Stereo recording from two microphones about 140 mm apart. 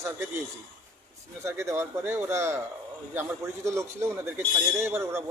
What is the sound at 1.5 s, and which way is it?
A man's voice, 20° right (ahead or behind).